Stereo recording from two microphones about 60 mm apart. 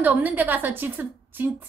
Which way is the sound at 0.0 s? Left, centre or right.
Right.